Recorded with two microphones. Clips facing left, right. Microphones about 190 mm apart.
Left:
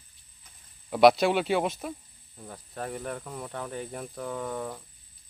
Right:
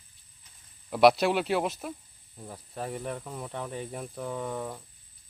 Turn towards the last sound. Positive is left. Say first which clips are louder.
# even
turn(degrees=0)  # may be behind; listen again after turning